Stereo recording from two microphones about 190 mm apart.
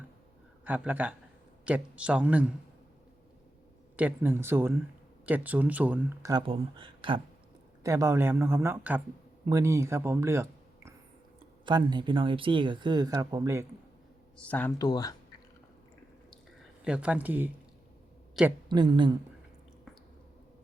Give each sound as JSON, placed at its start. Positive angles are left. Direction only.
{"t": 0.6, "sound": "speech", "side_deg": -10}
{"t": 3.9, "sound": "speech", "side_deg": -10}
{"t": 6.3, "sound": "speech", "side_deg": -30}
{"t": 7.9, "sound": "speech", "side_deg": -15}
{"t": 11.6, "sound": "speech", "side_deg": -25}
{"t": 14.3, "sound": "speech", "side_deg": 5}
{"t": 14.8, "sound": "speech", "side_deg": 20}
{"t": 16.8, "sound": "speech", "side_deg": -5}
{"t": 18.7, "sound": "speech", "side_deg": -25}